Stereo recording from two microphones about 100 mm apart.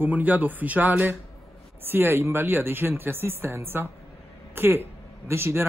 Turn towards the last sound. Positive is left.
turn(degrees=-25)  # may be behind; listen again after turning